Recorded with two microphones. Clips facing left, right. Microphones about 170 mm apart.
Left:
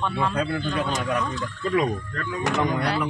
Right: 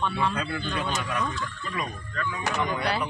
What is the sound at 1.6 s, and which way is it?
Speech, 90° left.